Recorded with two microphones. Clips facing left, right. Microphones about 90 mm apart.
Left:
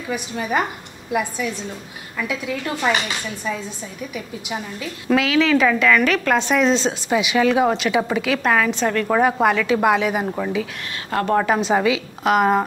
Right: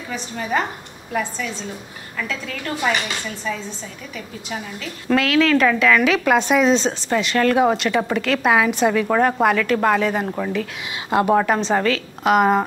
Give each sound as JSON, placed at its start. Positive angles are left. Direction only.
{"t": 0.1, "sound": "speech", "side_deg": 10}
{"t": 4.5, "sound": "a woman's voice", "side_deg": 10}
{"t": 8.5, "sound": "a woman's voice", "side_deg": -10}
{"t": 11.1, "sound": "a woman's voice", "side_deg": -15}
{"t": 11.3, "sound": "a woman's voice", "side_deg": 0}